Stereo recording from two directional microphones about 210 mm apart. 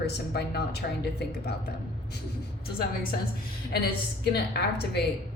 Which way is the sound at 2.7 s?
45° left (ahead or behind).